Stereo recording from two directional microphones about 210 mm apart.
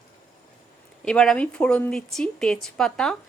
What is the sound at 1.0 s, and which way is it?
A woman's voice, 5° left (ahead or behind).